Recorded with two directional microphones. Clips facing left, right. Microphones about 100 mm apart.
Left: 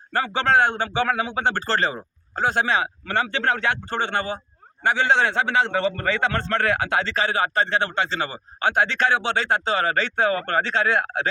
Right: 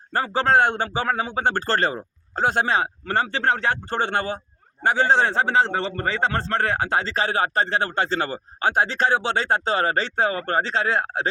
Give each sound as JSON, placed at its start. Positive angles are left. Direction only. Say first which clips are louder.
{"t": 0.1, "sound": "a man's voice", "louder": "right 1 dB", "side_deg": -40}